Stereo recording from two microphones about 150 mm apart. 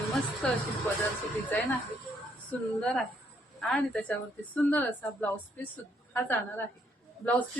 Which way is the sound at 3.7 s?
10° left (ahead or behind).